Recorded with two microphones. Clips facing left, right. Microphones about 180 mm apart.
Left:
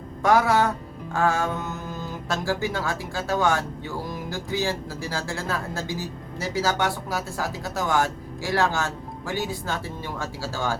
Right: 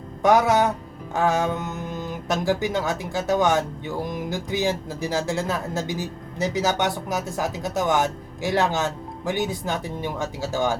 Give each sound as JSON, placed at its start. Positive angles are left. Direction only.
{"t": 0.2, "sound": "speech", "side_deg": -20}